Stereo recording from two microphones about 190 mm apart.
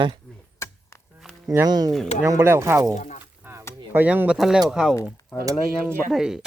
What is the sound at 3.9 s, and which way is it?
Speech, 10° right (ahead or behind).